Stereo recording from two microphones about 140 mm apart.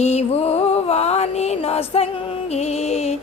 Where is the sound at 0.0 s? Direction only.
50° left (ahead or behind).